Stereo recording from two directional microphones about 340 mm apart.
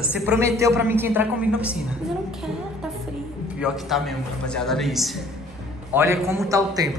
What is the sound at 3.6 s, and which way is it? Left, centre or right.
A man's voice, centre.